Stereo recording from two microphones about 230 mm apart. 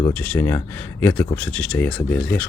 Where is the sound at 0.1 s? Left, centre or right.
Centre.